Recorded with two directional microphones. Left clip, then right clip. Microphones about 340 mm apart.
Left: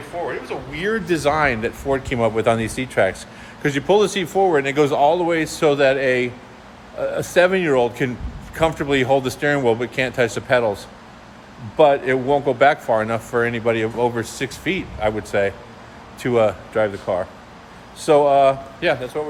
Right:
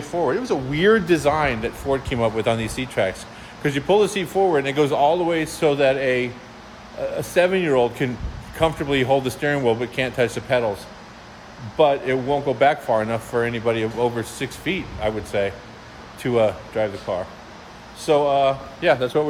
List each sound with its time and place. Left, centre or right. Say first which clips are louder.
0.4 s speech: right 6 dB; right
1.0 s speech: left 1 dB; centre
11.8 s speech: left 3 dB; centre
19.1 s speech: right 5 dB; right